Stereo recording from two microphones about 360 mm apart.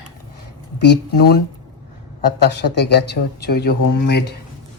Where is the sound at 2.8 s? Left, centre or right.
Left.